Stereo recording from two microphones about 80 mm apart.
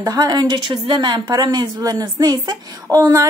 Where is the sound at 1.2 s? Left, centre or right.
Right.